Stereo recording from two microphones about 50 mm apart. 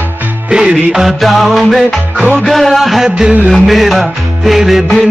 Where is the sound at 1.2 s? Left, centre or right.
Centre.